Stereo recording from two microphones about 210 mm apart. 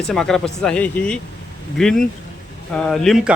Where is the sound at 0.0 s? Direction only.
Centre (ahead or behind).